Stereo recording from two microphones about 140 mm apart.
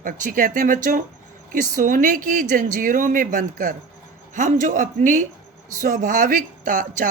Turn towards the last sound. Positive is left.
turn(degrees=-75)  # may be behind; listen again after turning